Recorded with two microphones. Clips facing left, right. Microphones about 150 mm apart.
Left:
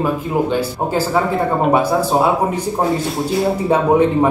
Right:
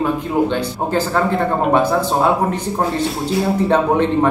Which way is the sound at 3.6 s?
10° left (ahead or behind).